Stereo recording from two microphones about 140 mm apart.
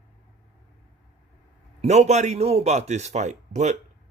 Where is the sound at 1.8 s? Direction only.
50° right (ahead or behind).